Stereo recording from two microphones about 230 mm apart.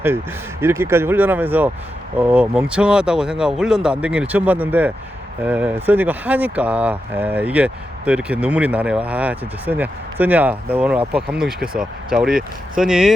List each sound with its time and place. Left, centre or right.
0.6 s speech: centre